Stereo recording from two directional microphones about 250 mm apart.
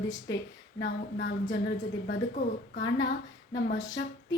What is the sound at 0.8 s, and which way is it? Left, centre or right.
Speech, left.